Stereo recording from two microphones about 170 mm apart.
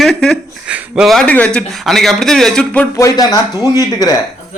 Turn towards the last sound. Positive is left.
turn(degrees=20)  # may be behind; listen again after turning